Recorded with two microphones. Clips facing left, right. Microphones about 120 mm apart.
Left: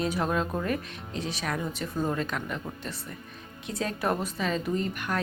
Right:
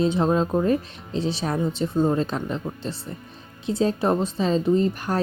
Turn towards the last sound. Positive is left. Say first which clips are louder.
# right 8 dB
turn(degrees=-30)  # may be behind; listen again after turning